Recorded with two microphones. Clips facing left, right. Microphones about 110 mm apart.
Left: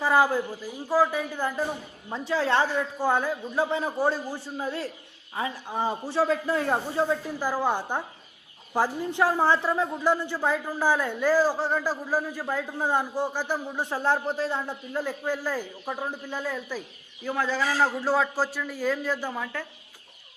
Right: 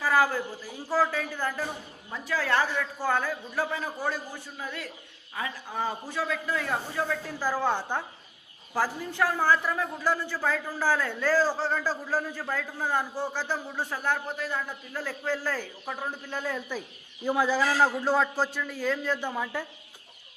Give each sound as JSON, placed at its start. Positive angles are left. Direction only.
{"t": 0.0, "sound": "a man's voice", "side_deg": 25}
{"t": 13.9, "sound": "a man's voice", "side_deg": 30}
{"t": 16.5, "sound": "a man's voice", "side_deg": 0}
{"t": 17.2, "sound": "a man's voice", "side_deg": -10}